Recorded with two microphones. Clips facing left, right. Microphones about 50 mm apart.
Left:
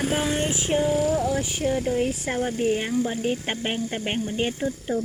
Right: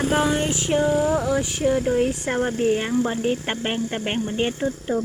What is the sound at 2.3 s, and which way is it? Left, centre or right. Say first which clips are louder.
Speech: right 3 dB; right.